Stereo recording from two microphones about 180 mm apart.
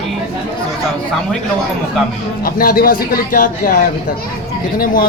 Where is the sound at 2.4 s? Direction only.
55° left (ahead or behind).